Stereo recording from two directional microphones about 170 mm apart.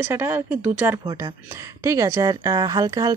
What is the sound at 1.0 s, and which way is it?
Speech, 20° right (ahead or behind).